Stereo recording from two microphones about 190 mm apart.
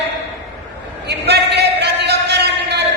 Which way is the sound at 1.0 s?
60° right (ahead or behind).